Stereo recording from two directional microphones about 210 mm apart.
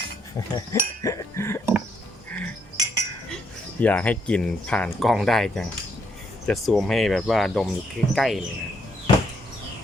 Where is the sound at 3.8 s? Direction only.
5° left (ahead or behind).